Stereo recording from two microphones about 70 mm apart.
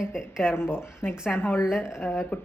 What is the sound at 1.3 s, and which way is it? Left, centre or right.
Speech, left.